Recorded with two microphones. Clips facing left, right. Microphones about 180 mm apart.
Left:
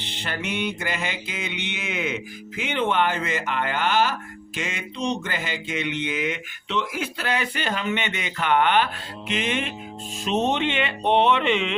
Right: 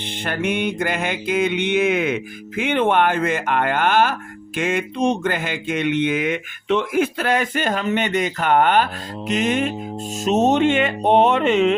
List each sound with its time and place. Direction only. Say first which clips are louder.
0.0 s speech: right 7 dB; 50° right (ahead or behind)